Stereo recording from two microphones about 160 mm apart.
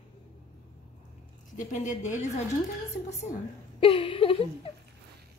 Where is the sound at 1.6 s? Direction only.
50° left (ahead or behind).